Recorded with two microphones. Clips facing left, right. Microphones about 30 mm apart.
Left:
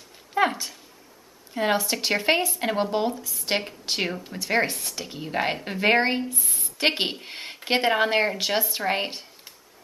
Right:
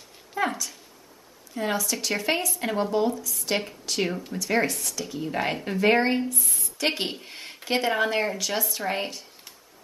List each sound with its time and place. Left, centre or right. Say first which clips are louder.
0.3 s a sound: left 4 dB; left
1.5 s speech: left 4 dB; left
4.1 s a woman's voice: right 1 dB; centre
4.4 s speech: left 1 dB; left
6.3 s a woman's voice: right 1 dB; centre
6.6 s a woman's voice: left 4 dB; left